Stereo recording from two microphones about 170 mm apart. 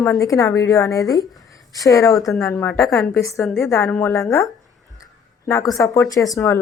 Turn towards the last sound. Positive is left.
turn(degrees=20)  # may be behind; listen again after turning